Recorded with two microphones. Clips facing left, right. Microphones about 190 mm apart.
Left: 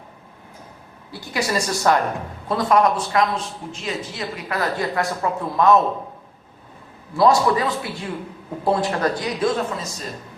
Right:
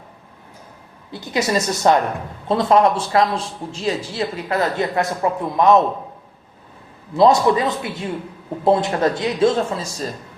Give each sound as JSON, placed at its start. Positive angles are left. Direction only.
{"t": 1.1, "sound": "a man's voice", "side_deg": -20}
{"t": 7.2, "sound": "a man's voice", "side_deg": -20}